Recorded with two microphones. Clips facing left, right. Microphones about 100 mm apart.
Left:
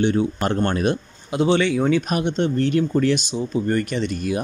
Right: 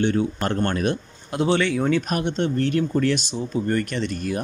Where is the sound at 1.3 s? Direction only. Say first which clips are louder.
Left 2 dB; centre (ahead or behind).